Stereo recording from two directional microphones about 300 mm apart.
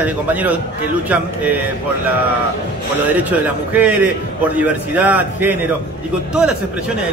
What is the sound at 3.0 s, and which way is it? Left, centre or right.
A man's voice, centre.